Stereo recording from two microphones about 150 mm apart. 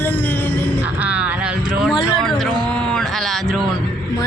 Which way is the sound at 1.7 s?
5° right (ahead or behind).